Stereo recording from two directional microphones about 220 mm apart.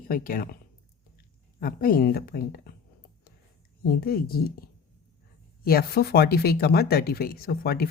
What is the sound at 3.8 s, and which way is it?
Speech, 40° left (ahead or behind).